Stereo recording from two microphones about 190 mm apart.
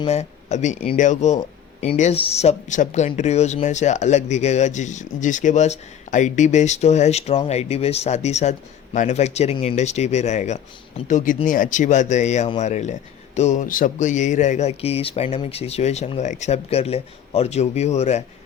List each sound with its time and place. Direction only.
0.0 s speech: 35° left (ahead or behind)